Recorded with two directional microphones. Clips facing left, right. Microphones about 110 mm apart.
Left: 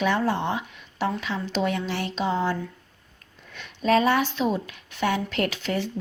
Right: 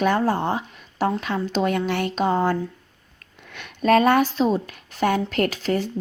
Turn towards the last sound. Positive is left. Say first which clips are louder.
# right 4 dB
turn(degrees=-40)  # may be behind; listen again after turning